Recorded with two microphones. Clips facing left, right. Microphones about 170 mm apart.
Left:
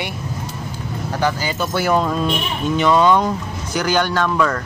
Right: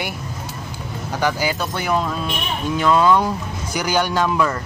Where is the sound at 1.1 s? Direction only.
10° right (ahead or behind).